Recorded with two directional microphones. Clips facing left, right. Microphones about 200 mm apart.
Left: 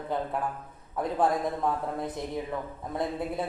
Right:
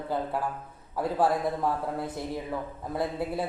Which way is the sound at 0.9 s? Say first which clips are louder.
Right 1 dB; 5° right (ahead or behind).